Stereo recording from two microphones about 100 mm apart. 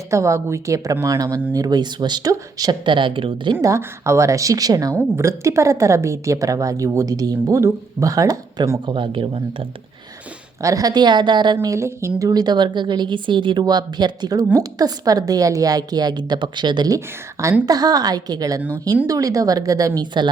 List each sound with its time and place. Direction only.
0.1 s a woman's voice: 30° right (ahead or behind); by 3.6 s 55° right (ahead or behind)
3.6 s a woman's voice: 30° right (ahead or behind)
8.9 s speech: 55° right (ahead or behind)
10.6 s speech: 35° right (ahead or behind)
11.7 s a woman's voice: 30° right (ahead or behind)
12.3 s a woman's voice: 45° right (ahead or behind)
20.0 s speech: 50° right (ahead or behind)